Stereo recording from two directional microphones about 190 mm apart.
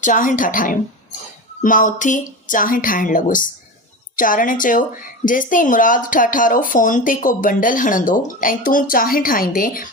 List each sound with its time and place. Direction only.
0.0 s speech: 45° left (ahead or behind)